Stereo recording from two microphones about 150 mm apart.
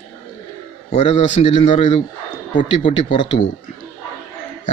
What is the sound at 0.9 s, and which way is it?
Speech, 45° left (ahead or behind).